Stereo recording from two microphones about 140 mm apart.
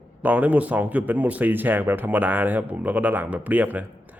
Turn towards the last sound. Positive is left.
turn(degrees=-10)  # may be behind; listen again after turning